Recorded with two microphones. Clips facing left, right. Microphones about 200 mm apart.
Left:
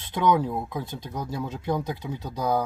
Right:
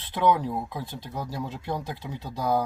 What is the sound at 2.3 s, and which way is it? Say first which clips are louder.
Speech: even; 5° right (ahead or behind).